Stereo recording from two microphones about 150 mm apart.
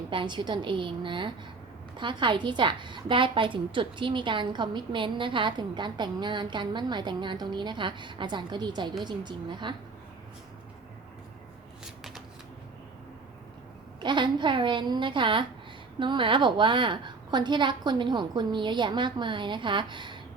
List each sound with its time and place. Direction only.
0.1 s a woman's voice: 30° right (ahead or behind)
14.0 s a woman's voice: 30° right (ahead or behind)